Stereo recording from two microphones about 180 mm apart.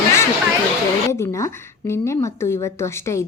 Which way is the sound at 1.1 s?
15° left (ahead or behind).